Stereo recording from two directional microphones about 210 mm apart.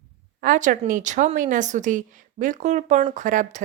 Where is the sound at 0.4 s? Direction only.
40° right (ahead or behind).